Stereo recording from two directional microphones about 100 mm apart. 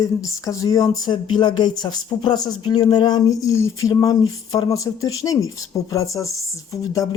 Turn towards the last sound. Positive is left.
turn(degrees=35)  # may be behind; listen again after turning